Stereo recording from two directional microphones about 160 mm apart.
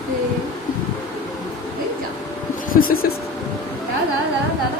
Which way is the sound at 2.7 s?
65° left (ahead or behind).